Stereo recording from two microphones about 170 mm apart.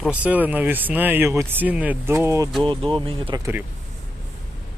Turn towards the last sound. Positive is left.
turn(degrees=-30)  # may be behind; listen again after turning